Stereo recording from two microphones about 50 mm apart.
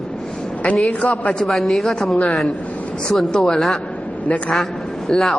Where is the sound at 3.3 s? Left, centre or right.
Centre.